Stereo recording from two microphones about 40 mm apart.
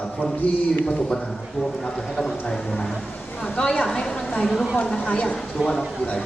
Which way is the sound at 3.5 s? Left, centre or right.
Centre.